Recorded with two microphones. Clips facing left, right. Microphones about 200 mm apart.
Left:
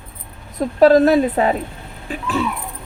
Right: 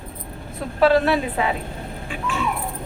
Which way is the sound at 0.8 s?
40° left (ahead or behind).